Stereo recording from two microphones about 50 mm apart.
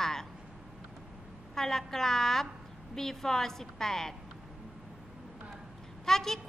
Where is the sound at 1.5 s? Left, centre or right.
Centre.